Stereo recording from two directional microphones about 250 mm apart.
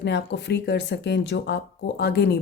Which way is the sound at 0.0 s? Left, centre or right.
Left.